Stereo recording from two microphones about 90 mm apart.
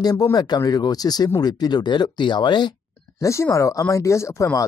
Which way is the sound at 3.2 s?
35° left (ahead or behind).